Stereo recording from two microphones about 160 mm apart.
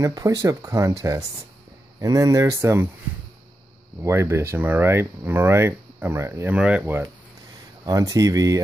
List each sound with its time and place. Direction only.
0.0 s speech: 20° right (ahead or behind)
4.0 s speech: 15° right (ahead or behind)
7.8 s speech: 20° right (ahead or behind)